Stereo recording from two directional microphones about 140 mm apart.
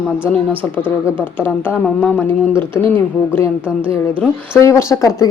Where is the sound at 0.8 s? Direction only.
10° right (ahead or behind).